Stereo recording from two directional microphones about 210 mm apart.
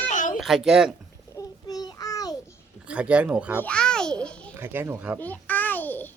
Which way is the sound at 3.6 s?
5° left (ahead or behind).